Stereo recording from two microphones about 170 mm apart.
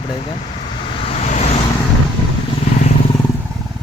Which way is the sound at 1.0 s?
40° left (ahead or behind).